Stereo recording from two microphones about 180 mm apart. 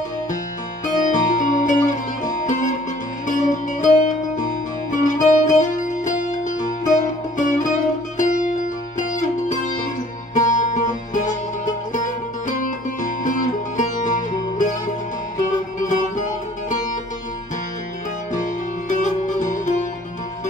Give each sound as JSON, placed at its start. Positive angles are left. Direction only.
{"t": 0.8, "sound": "music", "side_deg": 45}
{"t": 4.9, "sound": "music", "side_deg": 45}
{"t": 15.8, "sound": "music", "side_deg": 45}
{"t": 18.3, "sound": "music", "side_deg": 45}